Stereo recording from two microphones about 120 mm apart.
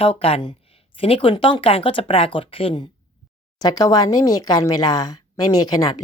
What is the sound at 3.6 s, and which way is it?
Speech, 35° left (ahead or behind).